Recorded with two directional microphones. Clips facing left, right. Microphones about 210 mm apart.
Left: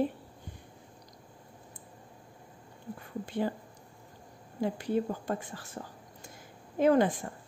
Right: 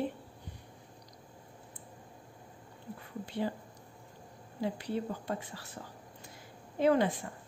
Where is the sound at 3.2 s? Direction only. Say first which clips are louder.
Left 3 dB; 50° left (ahead or behind).